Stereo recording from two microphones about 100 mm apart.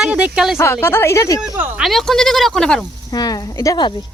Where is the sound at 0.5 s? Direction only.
25° left (ahead or behind).